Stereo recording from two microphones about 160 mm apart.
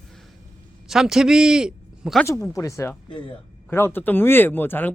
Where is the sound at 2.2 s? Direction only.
20° left (ahead or behind).